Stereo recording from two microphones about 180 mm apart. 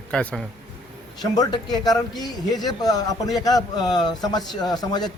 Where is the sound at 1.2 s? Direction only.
20° left (ahead or behind).